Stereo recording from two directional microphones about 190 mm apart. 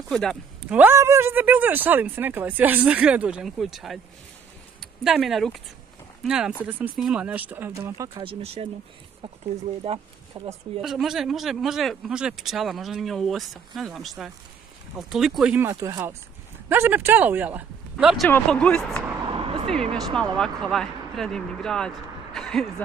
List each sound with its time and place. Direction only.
0.1 s speech: 5° left (ahead or behind)
5.0 s speech: centre (ahead or behind)
8.1 s speech: 30° right (ahead or behind)
9.8 s speech: 25° right (ahead or behind)
10.8 s speech: centre (ahead or behind)
19.3 s vehicle: 30° right (ahead or behind)
19.7 s speech: 5° left (ahead or behind)